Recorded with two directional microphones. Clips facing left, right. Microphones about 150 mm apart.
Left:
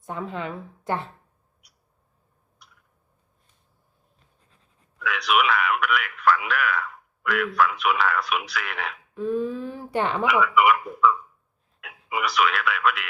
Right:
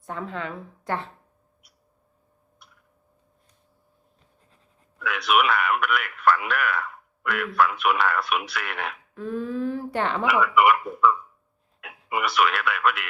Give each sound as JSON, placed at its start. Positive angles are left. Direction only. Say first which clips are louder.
{"t": 0.0, "sound": "a woman's voice", "louder": "left 1 dB", "side_deg": 15}
{"t": 2.6, "sound": "a sound", "louder": "even", "side_deg": 0}
{"t": 4.9, "sound": "a woman's voice", "louder": "right 1 dB", "side_deg": 0}
{"t": 10.2, "sound": "speech", "louder": "right 1 dB", "side_deg": 0}